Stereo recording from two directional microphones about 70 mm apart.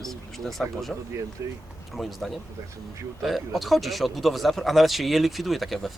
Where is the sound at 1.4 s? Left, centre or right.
Right.